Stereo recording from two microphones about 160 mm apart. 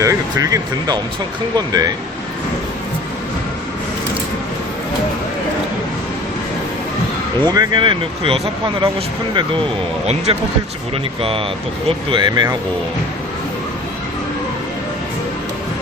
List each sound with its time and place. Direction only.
0.0 s speech: 20° right (ahead or behind)
7.5 s speech: 25° right (ahead or behind)